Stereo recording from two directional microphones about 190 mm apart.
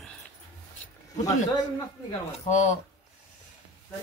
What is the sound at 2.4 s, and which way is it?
Speech, 40° left (ahead or behind).